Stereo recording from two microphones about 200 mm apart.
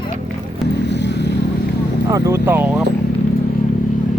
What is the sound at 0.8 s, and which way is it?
Vehicle, 60° left (ahead or behind).